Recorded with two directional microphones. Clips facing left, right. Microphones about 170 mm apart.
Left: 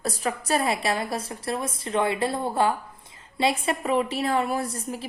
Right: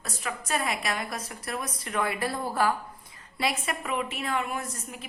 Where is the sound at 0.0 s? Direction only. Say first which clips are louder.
Left 7 dB; 35° left (ahead or behind).